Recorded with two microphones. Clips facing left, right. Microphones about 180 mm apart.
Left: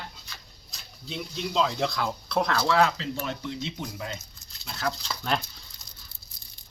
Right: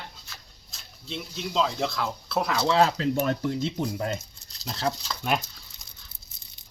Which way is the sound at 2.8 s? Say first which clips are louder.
Right 5 dB; 50° right (ahead or behind).